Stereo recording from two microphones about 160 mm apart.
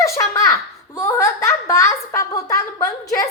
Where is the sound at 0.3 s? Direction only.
15° left (ahead or behind).